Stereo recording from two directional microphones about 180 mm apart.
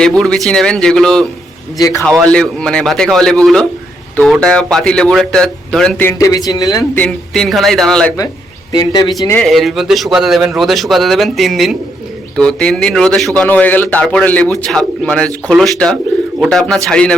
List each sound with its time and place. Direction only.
0.0 s a man's voice: 5° left (ahead or behind)
1.8 s a man's voice: 15° left (ahead or behind)
2.2 s a man's voice: 5° left (ahead or behind)
7.0 s a man's voice: 5° left (ahead or behind)
8.7 s speech: 20° left (ahead or behind)
9.4 s a man's voice: centre (ahead or behind)